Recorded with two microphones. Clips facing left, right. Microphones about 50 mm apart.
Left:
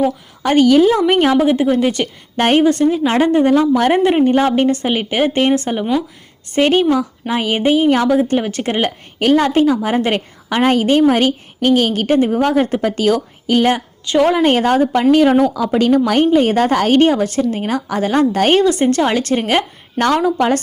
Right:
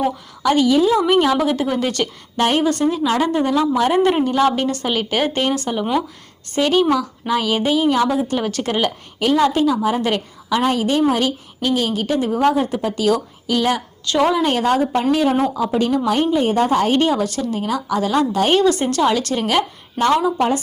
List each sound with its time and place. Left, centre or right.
0.4 s a woman's voice: left
0.7 s speech: left
1.0 s a woman's voice: left
1.3 s a woman's voice: left
2.4 s a woman's voice: left
4.0 s a woman's voice: left
8.4 s a woman's voice: left
9.2 s a woman's voice: left
15.1 s a woman's voice: left
17.0 s a woman's voice: left
18.7 s a woman's voice: left
20.0 s a woman's voice: left